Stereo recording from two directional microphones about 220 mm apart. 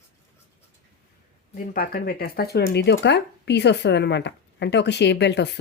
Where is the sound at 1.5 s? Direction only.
40° left (ahead or behind).